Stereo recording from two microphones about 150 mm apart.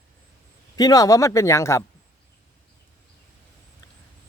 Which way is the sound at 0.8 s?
25° left (ahead or behind).